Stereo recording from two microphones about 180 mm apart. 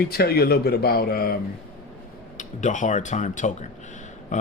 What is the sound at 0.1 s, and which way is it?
Speech, 60° left (ahead or behind).